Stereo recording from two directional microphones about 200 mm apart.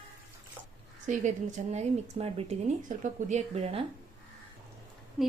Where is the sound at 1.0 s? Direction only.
40° right (ahead or behind).